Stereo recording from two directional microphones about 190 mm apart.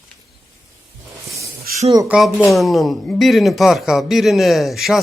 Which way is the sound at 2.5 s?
Centre (ahead or behind).